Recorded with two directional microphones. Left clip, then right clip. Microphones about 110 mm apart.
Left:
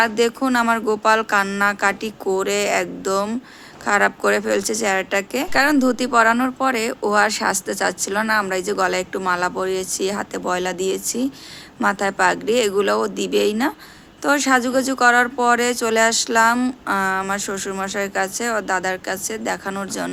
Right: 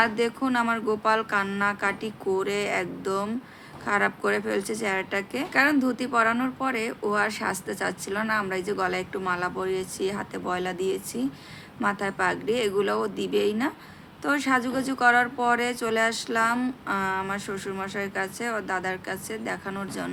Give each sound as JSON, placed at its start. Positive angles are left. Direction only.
{"t": 0.0, "sound": "a woman's voice", "side_deg": 25}